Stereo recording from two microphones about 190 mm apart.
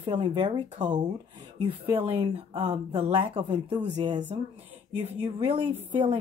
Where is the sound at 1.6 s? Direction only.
30° right (ahead or behind).